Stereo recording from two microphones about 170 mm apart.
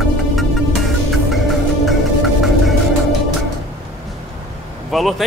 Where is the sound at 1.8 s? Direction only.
Centre (ahead or behind).